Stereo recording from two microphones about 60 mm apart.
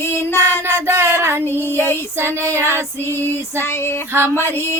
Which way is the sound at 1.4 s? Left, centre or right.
Left.